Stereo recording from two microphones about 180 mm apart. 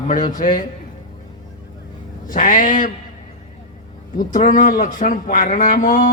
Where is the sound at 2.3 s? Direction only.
45° left (ahead or behind).